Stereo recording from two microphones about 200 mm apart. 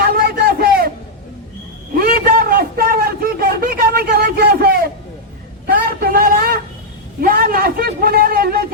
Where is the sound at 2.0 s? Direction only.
45° right (ahead or behind).